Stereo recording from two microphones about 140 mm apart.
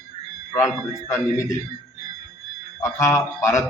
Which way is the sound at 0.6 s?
20° left (ahead or behind).